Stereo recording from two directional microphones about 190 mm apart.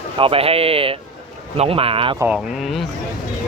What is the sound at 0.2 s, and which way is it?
A man's voice, 30° right (ahead or behind).